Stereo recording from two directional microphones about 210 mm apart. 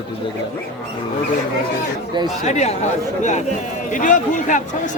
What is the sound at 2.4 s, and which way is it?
Speech, 35° left (ahead or behind).